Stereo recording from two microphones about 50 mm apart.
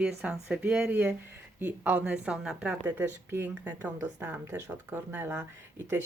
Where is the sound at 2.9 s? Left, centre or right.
Right.